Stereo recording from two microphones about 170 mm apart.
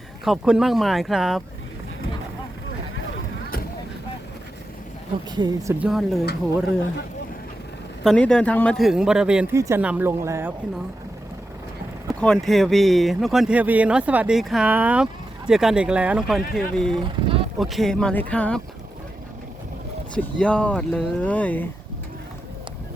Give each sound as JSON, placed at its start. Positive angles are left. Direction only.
{"t": 0.3, "sound": "speech", "side_deg": -5}
{"t": 5.3, "sound": "speech", "side_deg": -25}
{"t": 5.8, "sound": "speech", "side_deg": 0}
{"t": 8.0, "sound": "speech", "side_deg": 5}
{"t": 12.2, "sound": "speech", "side_deg": 5}
{"t": 17.0, "sound": "speech", "side_deg": -30}
{"t": 17.6, "sound": "speech", "side_deg": 0}
{"t": 20.1, "sound": "speech", "side_deg": 5}